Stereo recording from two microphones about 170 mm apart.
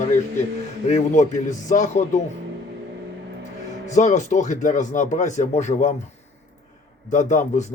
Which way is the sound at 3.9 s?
45° left (ahead or behind).